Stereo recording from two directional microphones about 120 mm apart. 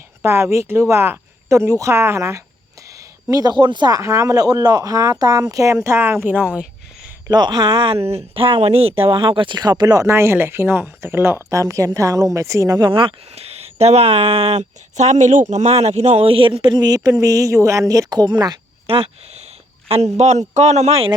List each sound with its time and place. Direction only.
0.2 s speech: 20° right (ahead or behind)
7.3 s speech: 35° right (ahead or behind)
8.0 s speech: 55° right (ahead or behind); by 12.8 s 25° right (ahead or behind)
12.8 s speech: 45° right (ahead or behind)
18.9 s speech: 50° right (ahead or behind)
20.1 s speech: 70° right (ahead or behind)